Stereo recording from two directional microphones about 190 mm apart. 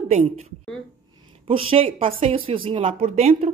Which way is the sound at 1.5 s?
30° right (ahead or behind).